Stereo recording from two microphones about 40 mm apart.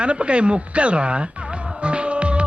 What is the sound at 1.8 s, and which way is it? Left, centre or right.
Music, right.